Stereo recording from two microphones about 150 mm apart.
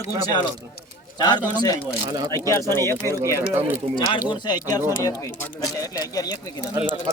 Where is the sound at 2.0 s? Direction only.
25° right (ahead or behind).